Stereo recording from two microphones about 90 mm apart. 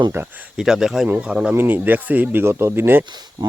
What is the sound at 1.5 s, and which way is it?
Speech, 25° right (ahead or behind).